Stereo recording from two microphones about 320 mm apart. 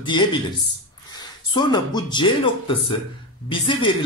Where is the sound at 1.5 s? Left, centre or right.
Centre.